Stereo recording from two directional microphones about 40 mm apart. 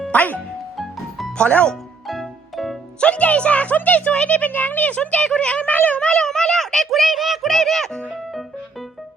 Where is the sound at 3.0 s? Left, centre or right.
Left.